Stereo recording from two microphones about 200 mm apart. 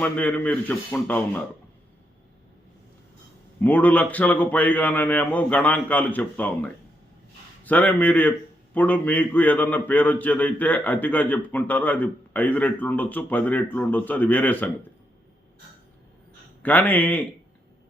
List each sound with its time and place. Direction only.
0.0 s a man's voice: 10° left (ahead or behind)
3.6 s a man's voice: 10° left (ahead or behind)
16.6 s a man's voice: 10° left (ahead or behind)